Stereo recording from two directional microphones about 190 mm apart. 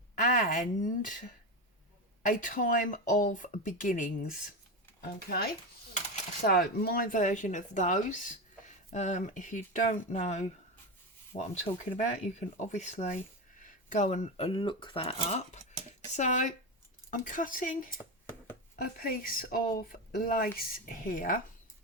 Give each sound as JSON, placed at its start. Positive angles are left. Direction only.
{"t": 0.2, "sound": "speech", "side_deg": 45}
{"t": 4.9, "sound": "speech", "side_deg": 55}
{"t": 11.9, "sound": "speech", "side_deg": 35}